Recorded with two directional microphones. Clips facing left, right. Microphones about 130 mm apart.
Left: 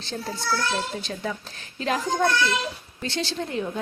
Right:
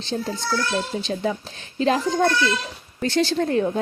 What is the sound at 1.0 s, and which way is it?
Speech, 30° right (ahead or behind).